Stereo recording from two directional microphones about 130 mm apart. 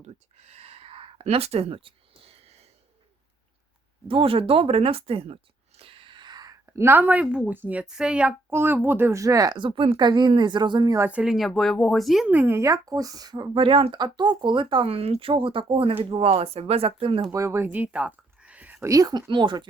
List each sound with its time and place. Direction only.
0.0 s a sound: 55° right (ahead or behind)
4.1 s speech: 45° right (ahead or behind)
11.0 s speech: 10° right (ahead or behind)
12.3 s speech: 15° right (ahead or behind); by 17.2 s 45° right (ahead or behind)
17.3 s speech: 20° right (ahead or behind)
18.9 s speech: 30° right (ahead or behind)